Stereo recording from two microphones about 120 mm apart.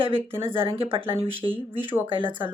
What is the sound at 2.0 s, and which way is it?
Speech, 45° right (ahead or behind).